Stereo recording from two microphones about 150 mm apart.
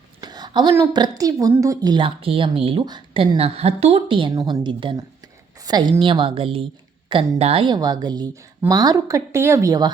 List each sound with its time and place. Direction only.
0.2 s a sound: 30° right (ahead or behind)
0.9 s a woman's voice: 25° right (ahead or behind)
3.3 s a woman's voice: 45° right (ahead or behind); by 9.9 s 25° right (ahead or behind)